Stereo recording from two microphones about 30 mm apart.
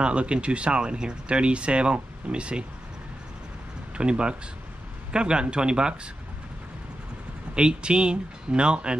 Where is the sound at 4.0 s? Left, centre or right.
Right.